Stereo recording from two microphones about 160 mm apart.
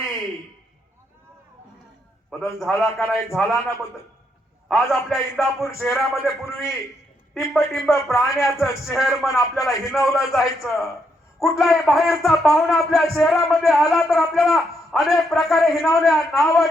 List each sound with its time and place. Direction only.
2.3 s a man's voice: centre (ahead or behind)
5.6 s speech: 15° left (ahead or behind)
5.9 s a man's voice: centre (ahead or behind)
7.5 s a man's voice: centre (ahead or behind)